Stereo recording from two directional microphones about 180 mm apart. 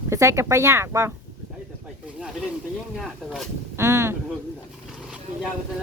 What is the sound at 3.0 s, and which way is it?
Speech, centre (ahead or behind).